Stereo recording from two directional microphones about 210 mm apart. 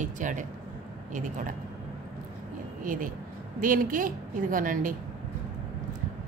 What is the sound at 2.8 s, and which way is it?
A woman's voice, 40° right (ahead or behind).